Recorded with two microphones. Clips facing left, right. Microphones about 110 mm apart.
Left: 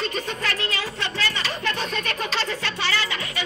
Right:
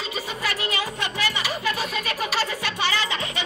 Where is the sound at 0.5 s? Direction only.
15° right (ahead or behind).